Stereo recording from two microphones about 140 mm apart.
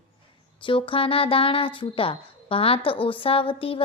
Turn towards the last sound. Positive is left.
turn(degrees=40)  # may be behind; listen again after turning